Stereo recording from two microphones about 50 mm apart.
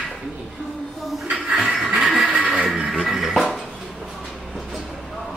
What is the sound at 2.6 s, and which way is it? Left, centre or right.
Music, centre.